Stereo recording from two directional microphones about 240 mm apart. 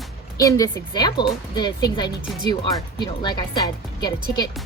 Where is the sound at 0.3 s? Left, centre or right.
Centre.